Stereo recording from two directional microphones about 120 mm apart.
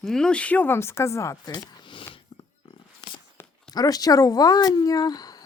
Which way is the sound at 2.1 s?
45° left (ahead or behind).